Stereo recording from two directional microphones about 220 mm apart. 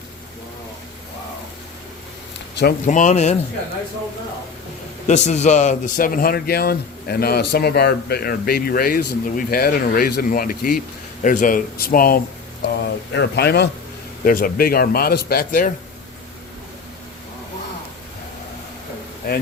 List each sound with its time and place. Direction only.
2.6 s speech: 40° left (ahead or behind)
5.0 s speech: 30° left (ahead or behind)
19.2 s speech: 45° left (ahead or behind)